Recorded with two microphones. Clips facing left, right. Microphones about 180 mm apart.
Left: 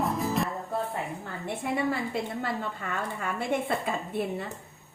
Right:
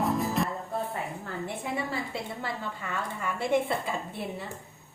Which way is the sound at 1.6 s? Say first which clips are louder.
Left 7 dB; 60° left (ahead or behind).